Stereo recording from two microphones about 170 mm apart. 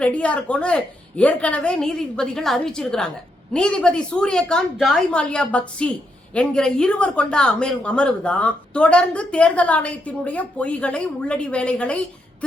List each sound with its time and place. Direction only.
0.0 s a woman's voice: 5° left (ahead or behind)